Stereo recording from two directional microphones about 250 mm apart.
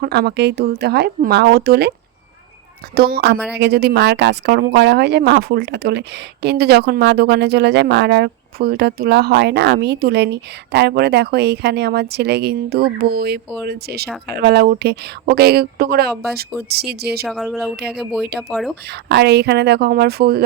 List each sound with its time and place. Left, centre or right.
0.0 s speech: right
2.9 s speech: right
17.2 s speech: centre
19.1 s speech: right